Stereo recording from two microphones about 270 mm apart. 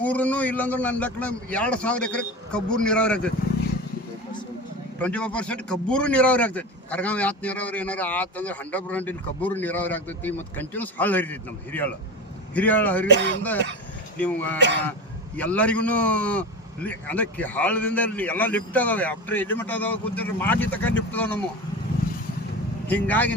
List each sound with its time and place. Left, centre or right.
0.0 s a man's voice: centre
4.9 s a man's voice: centre
13.1 s speech: right
14.2 s a man's voice: centre
22.9 s a man's voice: centre